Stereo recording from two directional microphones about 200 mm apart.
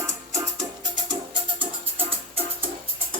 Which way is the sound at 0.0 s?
15° right (ahead or behind).